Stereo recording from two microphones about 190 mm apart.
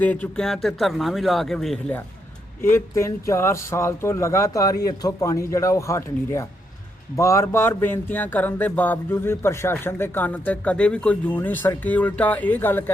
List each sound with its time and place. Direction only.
0.0 s speech: 10° left (ahead or behind)
2.6 s speech: 15° left (ahead or behind)